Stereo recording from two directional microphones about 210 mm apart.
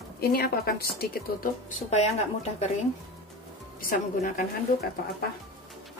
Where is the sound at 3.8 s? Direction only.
40° left (ahead or behind).